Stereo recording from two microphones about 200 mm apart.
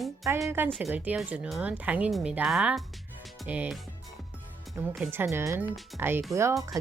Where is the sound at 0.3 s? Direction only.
10° right (ahead or behind).